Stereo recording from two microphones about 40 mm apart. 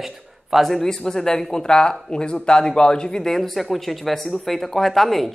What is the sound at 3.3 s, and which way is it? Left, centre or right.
Speech, centre.